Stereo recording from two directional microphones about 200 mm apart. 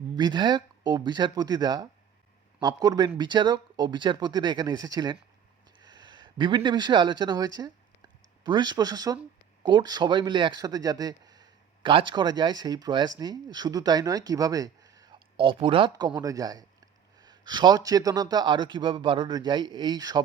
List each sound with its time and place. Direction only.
0.2 s a man's voice: 20° right (ahead or behind)